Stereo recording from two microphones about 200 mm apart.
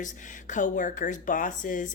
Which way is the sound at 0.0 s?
40° left (ahead or behind).